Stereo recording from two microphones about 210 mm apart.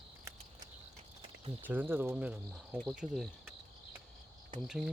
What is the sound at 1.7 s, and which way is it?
Speech, 10° right (ahead or behind).